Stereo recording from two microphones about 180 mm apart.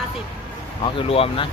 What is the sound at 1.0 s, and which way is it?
Speech, 30° left (ahead or behind).